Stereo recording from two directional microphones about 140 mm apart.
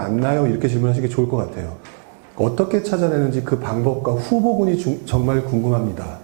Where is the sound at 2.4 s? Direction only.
15° right (ahead or behind).